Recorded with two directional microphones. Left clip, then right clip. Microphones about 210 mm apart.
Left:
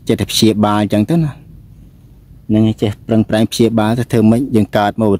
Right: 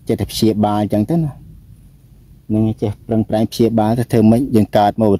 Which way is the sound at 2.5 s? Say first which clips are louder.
Left 4 dB; 20° left (ahead or behind).